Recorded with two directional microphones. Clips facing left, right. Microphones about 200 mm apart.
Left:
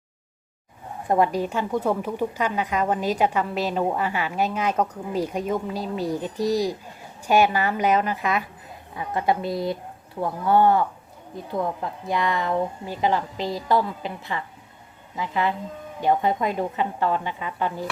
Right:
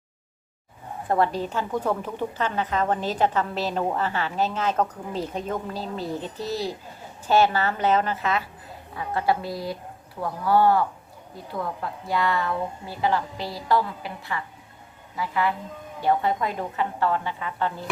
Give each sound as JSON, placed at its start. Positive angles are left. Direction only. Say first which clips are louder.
{"t": 1.0, "sound": "a woman's voice", "louder": "left 2 dB", "side_deg": 15}